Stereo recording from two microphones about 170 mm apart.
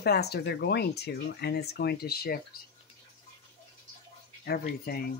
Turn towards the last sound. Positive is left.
turn(degrees=65)  # may be behind; listen again after turning